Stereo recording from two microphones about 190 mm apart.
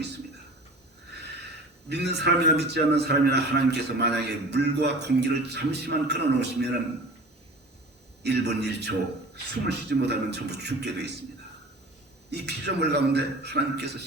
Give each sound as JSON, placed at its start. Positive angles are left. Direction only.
{"t": 1.9, "sound": "a man's voice", "side_deg": -60}
{"t": 8.2, "sound": "a man's voice", "side_deg": -60}
{"t": 12.3, "sound": "a man's voice", "side_deg": -60}